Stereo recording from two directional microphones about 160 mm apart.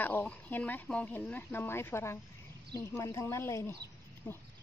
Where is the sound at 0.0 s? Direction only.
10° left (ahead or behind).